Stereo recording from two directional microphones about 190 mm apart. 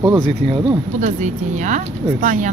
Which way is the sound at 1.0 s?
40° right (ahead or behind).